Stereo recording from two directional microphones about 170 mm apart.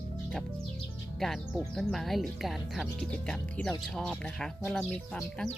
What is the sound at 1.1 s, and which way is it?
Speech, centre (ahead or behind).